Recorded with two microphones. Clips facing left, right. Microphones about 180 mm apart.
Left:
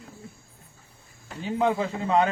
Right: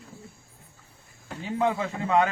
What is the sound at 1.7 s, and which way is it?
Speech, 30° left (ahead or behind).